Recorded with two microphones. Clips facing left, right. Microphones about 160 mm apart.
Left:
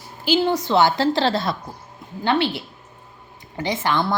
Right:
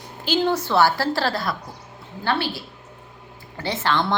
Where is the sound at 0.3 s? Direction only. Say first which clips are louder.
Left 2 dB; 15° left (ahead or behind).